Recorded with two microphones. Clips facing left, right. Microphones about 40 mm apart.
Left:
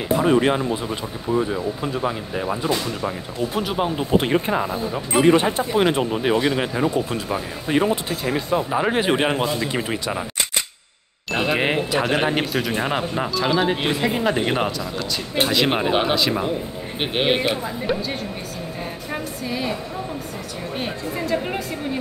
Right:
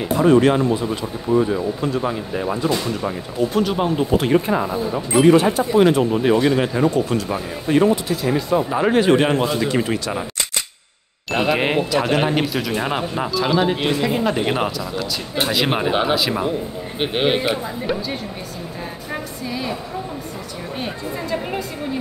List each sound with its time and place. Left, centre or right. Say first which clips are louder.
0.1 s speech: right 3 dB; centre
5.2 s speech: right 3 dB; left
5.7 s speech: right 4 dB; centre
8.9 s speech: right 7 dB; centre
11.3 s speech: right 2 dB; centre